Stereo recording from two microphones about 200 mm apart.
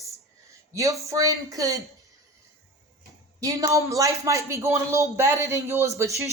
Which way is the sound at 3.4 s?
15° right (ahead or behind).